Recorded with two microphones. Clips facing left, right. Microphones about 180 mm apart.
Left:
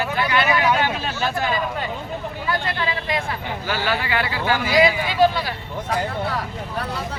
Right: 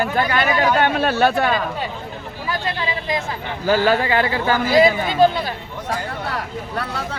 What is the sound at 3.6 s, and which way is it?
Speech, 40° right (ahead or behind).